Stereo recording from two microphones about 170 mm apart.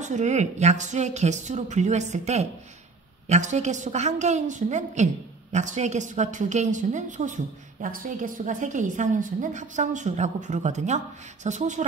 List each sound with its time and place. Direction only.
0.0 s a woman's voice: 45° right (ahead or behind)